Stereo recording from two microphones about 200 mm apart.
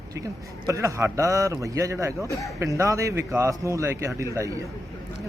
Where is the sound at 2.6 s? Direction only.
15° right (ahead or behind).